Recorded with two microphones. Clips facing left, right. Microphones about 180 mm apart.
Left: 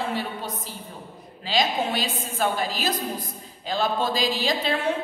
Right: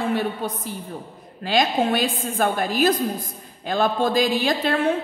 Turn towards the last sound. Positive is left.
turn(degrees=-55)  # may be behind; listen again after turning